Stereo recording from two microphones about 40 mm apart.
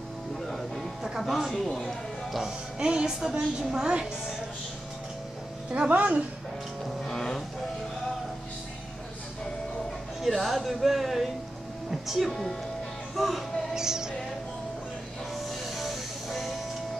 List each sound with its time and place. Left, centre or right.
0.4 s music: centre
1.3 s a woman's voice: centre
1.7 s speech: centre
2.8 s music: right
3.1 s a woman's voice: centre
5.9 s speech: right
7.1 s music: centre
10.2 s speech: centre
13.7 s music: centre
15.3 s music: centre